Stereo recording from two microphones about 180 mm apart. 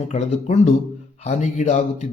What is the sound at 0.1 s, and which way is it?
Speech, 40° left (ahead or behind).